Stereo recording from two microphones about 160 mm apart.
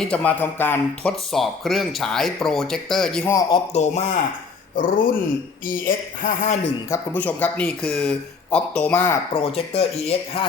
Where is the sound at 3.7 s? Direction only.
45° left (ahead or behind).